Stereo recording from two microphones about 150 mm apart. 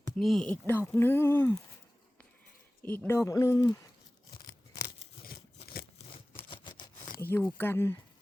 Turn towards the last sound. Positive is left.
turn(degrees=15)  # may be behind; listen again after turning